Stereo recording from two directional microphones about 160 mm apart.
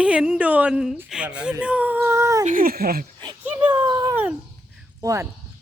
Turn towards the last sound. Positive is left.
turn(degrees=-20)  # may be behind; listen again after turning